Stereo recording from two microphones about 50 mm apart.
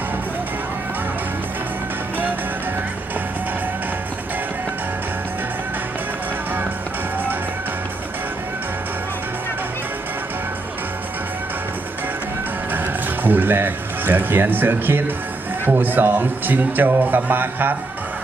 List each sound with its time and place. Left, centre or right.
12.7 s speech: right